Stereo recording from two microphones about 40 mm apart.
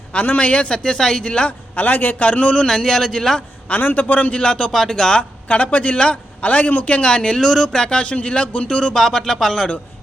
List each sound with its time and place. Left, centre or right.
0.3 s a man's voice: left
0.7 s speech: centre
1.5 s a man's voice: left
2.6 s speech: centre
3.8 s a man's voice: left
4.4 s speech: left
4.7 s speech: centre
5.1 s a man's voice: left
6.9 s speech: left
8.0 s a man's voice: left
9.0 s speech: centre